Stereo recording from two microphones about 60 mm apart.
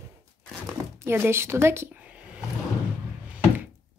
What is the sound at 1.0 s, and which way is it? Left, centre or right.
Speech, right.